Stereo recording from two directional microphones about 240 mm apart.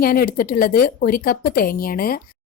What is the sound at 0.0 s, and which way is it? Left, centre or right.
A woman's voice, left.